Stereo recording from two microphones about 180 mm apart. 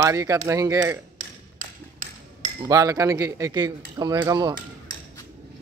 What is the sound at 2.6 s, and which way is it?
Speech, 20° right (ahead or behind).